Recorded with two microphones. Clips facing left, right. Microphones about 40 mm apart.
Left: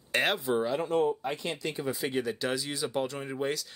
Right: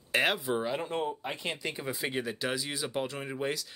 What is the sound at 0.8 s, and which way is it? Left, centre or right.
Speech, right.